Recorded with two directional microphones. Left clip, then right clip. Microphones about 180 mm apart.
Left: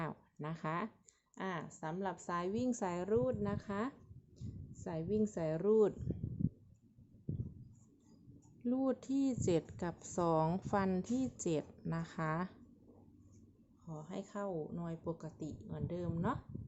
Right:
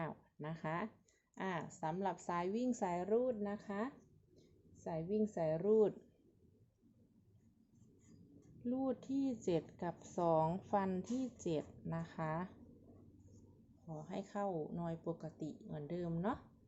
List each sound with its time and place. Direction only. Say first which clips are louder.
0.0 s a sound: left 2 dB; 15° left (ahead or behind)
1.4 s speech: even; 5° left (ahead or behind); by 5.9 s 20° left (ahead or behind)
8.6 s a woman's voice: left 4 dB; 20° left (ahead or behind)
13.8 s speech: even; 10° left (ahead or behind)